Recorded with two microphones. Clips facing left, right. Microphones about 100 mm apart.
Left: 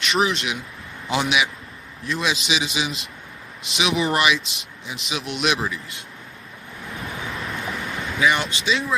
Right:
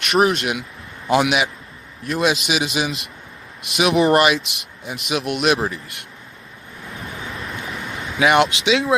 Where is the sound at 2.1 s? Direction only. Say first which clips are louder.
Right 4 dB; 50° right (ahead or behind).